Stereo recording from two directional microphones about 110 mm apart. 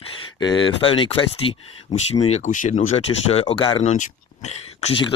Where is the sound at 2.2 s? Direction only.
85° left.